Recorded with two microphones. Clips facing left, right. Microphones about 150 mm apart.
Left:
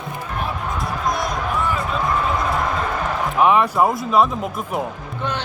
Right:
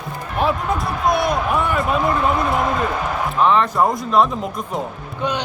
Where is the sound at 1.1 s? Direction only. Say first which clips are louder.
Right 6 dB; 65° right (ahead or behind).